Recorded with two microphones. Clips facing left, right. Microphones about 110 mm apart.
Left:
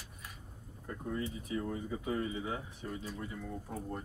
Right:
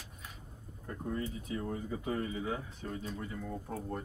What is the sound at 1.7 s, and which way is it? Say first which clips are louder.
Speech: even; 15° left (ahead or behind).